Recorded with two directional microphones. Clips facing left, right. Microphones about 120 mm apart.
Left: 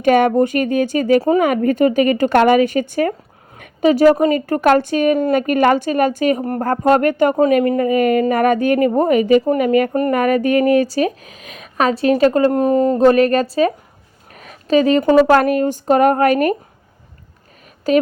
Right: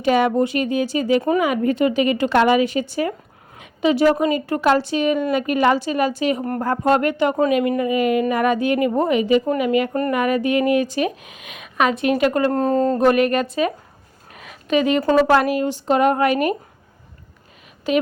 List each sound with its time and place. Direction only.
0.0 s a woman's voice: 50° left (ahead or behind); by 12.5 s 30° left (ahead or behind)
12.5 s speech: 15° left (ahead or behind)
13.0 s speech: 35° left (ahead or behind)
14.3 s a sound: 40° left (ahead or behind)
15.3 s a woman's voice: 45° left (ahead or behind)
17.9 s speech: 40° left (ahead or behind)